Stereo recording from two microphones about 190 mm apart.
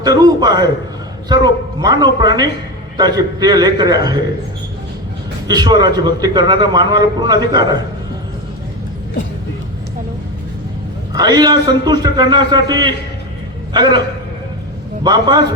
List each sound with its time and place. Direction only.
0.0 s a man's voice: 20° right (ahead or behind)
5.5 s a man's voice: 20° right (ahead or behind)
11.1 s a man's voice: 20° right (ahead or behind)
15.0 s a man's voice: 20° right (ahead or behind)